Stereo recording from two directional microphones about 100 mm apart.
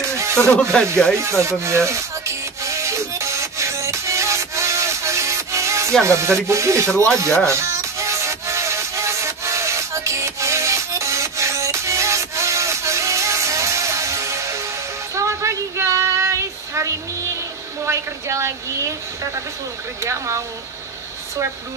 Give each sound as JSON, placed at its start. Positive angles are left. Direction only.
{"t": 0.2, "sound": "a sound", "side_deg": -25}
{"t": 0.5, "sound": "speech", "side_deg": 10}
{"t": 1.1, "sound": "rub", "side_deg": -30}
{"t": 6.0, "sound": "speech", "side_deg": -30}
{"t": 7.4, "sound": "music", "side_deg": -30}
{"t": 15.1, "sound": "a sound", "side_deg": -30}
{"t": 20.0, "sound": "speech", "side_deg": -30}